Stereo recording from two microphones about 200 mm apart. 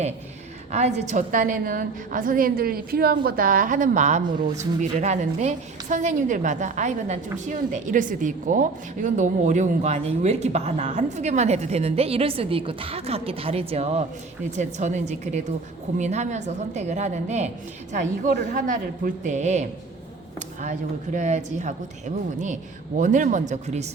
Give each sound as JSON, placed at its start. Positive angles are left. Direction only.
{"t": 0.7, "sound": "a woman's voice", "side_deg": -35}